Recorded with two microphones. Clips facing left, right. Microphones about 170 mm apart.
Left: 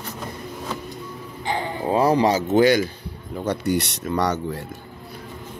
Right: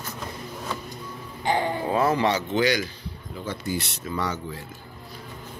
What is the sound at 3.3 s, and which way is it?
Speech, 70° left (ahead or behind).